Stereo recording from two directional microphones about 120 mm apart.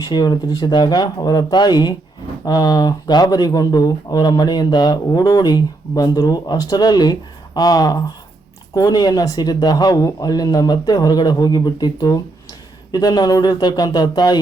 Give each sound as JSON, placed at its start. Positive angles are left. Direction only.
{"t": 0.0, "sound": "speech", "side_deg": 35}